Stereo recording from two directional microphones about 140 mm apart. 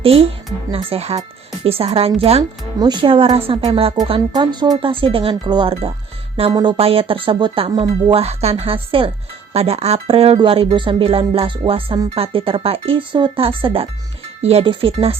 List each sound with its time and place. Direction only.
0.0 s a woman's voice: 40° right (ahead or behind)
2.7 s speech: 30° right (ahead or behind)
4.4 s speech: 30° right (ahead or behind)